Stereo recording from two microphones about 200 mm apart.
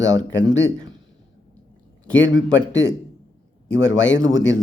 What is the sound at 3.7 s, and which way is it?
Speech, 65° left (ahead or behind).